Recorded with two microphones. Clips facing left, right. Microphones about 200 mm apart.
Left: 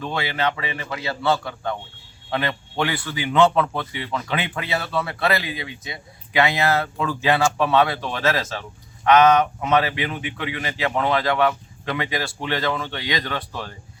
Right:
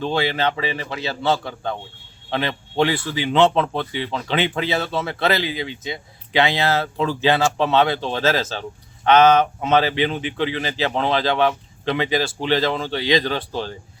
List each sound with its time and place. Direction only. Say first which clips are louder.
0.0 s speech: right 3 dB; 30° right (ahead or behind)